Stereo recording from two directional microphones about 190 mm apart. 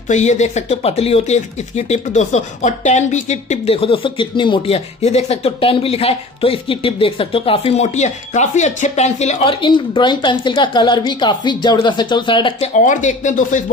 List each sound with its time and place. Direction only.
0.1 s speech: 40° left (ahead or behind)
12.7 s speech: 40° left (ahead or behind)